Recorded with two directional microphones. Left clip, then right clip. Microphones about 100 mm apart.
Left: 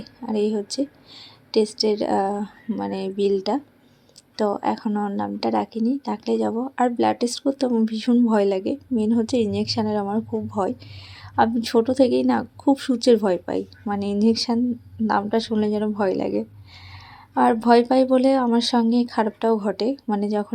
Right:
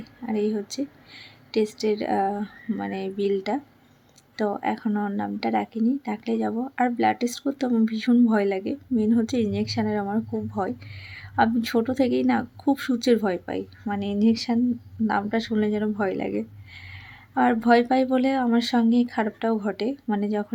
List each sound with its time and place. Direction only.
0.3 s a woman's voice: 35° left (ahead or behind)
4.9 s speech: 15° left (ahead or behind)
5.1 s a woman's voice: 30° left (ahead or behind)
11.0 s a woman's voice: 30° left (ahead or behind)
13.2 s a woman's voice: 35° left (ahead or behind)